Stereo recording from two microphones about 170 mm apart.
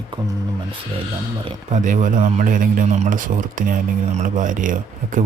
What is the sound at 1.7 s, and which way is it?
A man's voice, 50° right (ahead or behind).